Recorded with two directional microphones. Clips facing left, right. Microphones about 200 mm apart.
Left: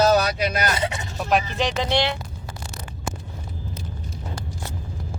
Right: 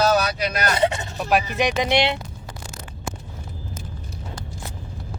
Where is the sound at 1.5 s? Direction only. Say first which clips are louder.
Right 2 dB; 15° right (ahead or behind).